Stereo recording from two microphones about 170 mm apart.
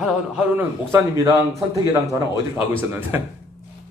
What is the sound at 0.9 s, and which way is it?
A man's voice, 15° right (ahead or behind).